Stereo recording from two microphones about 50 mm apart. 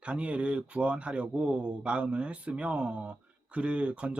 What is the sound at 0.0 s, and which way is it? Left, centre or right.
Speech, right.